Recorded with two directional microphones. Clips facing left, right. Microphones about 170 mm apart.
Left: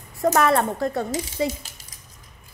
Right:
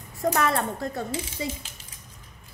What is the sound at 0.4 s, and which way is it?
Speech, 65° left (ahead or behind).